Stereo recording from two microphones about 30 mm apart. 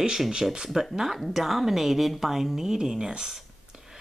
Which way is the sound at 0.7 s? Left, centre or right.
Centre.